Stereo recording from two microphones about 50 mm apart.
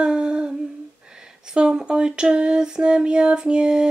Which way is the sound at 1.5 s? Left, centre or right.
Centre.